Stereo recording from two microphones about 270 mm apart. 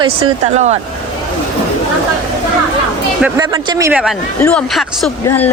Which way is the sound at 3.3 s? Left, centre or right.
Centre.